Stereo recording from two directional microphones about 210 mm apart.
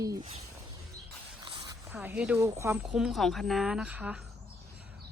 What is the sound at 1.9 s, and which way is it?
Speech, 5° right (ahead or behind).